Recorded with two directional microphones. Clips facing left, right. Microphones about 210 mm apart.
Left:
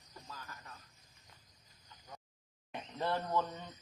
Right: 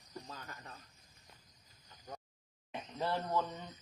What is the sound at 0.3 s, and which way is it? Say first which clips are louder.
Speech: right 2 dB; 30° right (ahead or behind).